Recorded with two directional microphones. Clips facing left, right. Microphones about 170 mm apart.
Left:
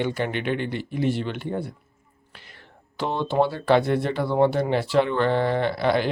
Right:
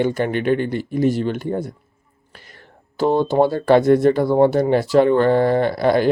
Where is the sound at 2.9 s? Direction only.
40° right (ahead or behind).